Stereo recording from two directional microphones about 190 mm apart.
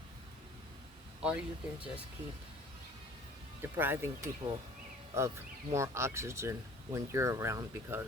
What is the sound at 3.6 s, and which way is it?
Speech, 10° right (ahead or behind).